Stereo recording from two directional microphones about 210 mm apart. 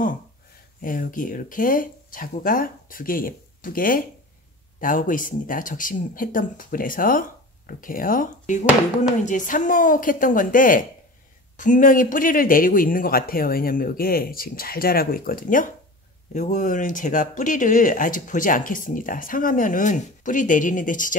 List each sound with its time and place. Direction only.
0.8 s speech: 40° left (ahead or behind)